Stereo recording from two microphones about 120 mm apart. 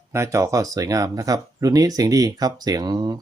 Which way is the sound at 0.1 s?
25° right (ahead or behind).